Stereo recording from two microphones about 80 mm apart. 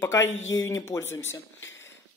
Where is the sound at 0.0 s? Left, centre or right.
Left.